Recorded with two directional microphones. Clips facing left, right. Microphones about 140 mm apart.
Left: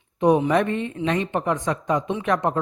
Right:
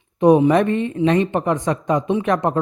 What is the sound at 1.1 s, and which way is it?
Speech, 55° right (ahead or behind).